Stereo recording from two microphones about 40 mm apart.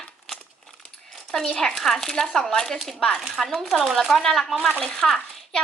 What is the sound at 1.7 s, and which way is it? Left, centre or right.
Speech, centre.